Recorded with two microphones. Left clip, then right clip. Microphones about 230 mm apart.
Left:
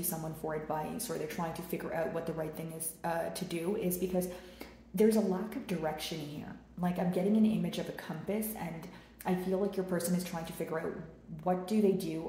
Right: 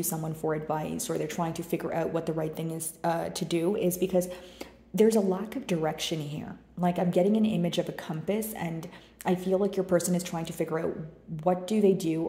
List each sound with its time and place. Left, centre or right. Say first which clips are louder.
0.4 s speech: right 6 dB; right